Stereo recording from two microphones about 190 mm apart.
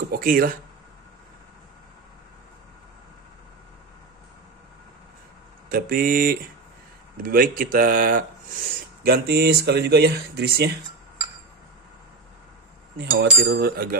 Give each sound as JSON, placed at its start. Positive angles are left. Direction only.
{"t": 0.1, "sound": "speech", "side_deg": -50}
{"t": 5.7, "sound": "speech", "side_deg": -50}
{"t": 9.0, "sound": "speech", "side_deg": -55}
{"t": 12.9, "sound": "speech", "side_deg": -60}